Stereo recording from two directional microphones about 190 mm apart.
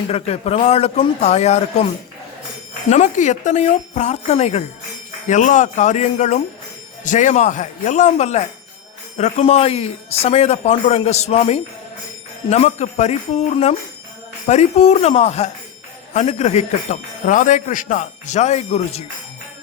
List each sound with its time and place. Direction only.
0.1 s speech: 35° left (ahead or behind)
2.9 s speech: 40° left (ahead or behind)